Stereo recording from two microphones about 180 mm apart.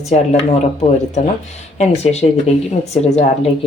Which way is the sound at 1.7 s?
35° left (ahead or behind).